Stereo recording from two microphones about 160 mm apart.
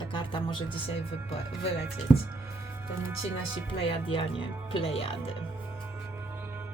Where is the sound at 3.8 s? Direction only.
35° left (ahead or behind).